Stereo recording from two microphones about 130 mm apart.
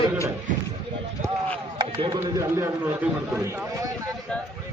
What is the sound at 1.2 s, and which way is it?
Speech, 80° right.